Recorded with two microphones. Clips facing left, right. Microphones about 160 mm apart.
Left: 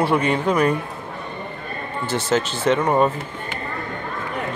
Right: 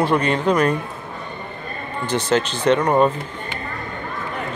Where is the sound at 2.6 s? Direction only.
5° left (ahead or behind).